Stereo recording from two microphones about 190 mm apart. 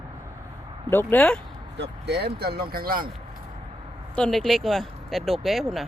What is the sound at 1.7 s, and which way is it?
Speech, 60° right (ahead or behind).